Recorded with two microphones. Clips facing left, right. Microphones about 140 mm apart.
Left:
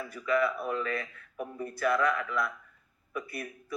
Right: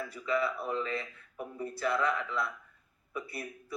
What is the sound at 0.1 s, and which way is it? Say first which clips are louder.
A man's voice: left 5 dB; 25° right (ahead or behind).